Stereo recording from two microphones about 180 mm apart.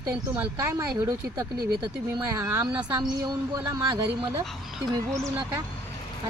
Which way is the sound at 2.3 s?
15° right (ahead or behind).